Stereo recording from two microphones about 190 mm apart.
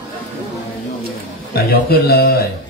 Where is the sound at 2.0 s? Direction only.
55° left (ahead or behind).